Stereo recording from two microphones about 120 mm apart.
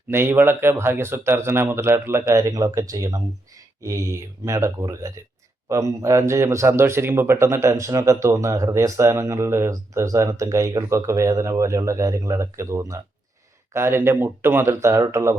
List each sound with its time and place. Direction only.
0.1 s speech: 20° right (ahead or behind)